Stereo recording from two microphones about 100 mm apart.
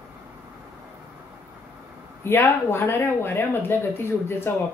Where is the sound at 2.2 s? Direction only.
25° left (ahead or behind).